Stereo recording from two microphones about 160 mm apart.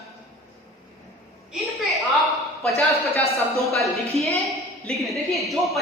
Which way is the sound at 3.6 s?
Centre (ahead or behind).